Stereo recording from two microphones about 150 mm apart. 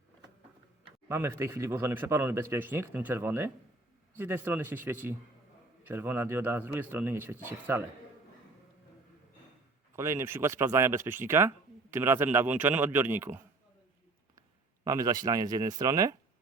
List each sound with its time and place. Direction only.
1.0 s speech: 15° right (ahead or behind)
9.9 s speech: 20° right (ahead or behind)
14.8 s speech: 25° right (ahead or behind)